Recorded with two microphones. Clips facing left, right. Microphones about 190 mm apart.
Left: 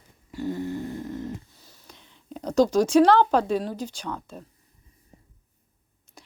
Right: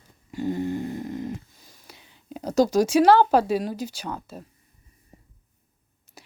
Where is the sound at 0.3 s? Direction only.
15° right (ahead or behind).